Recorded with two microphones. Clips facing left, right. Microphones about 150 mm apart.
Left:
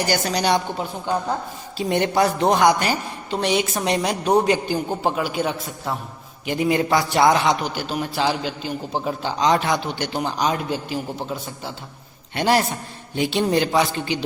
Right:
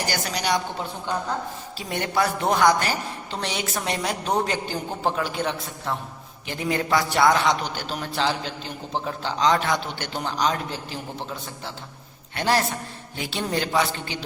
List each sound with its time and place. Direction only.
0.3 s a woman's voice: 30° left (ahead or behind)
1.8 s a woman's voice: 25° left (ahead or behind)
12.3 s a man's voice: 15° left (ahead or behind)